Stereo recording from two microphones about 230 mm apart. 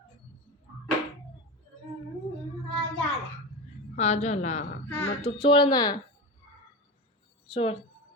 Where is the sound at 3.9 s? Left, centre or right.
Left.